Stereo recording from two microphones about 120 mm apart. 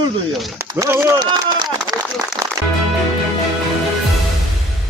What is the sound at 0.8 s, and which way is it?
Speech, 25° right (ahead or behind).